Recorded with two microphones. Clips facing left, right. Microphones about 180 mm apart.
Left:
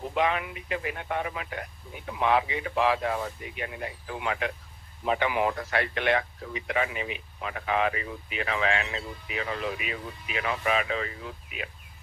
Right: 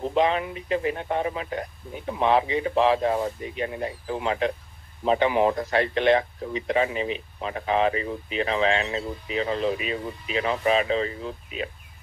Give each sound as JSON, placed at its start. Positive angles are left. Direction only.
{"t": 0.0, "sound": "a man's voice", "side_deg": -30}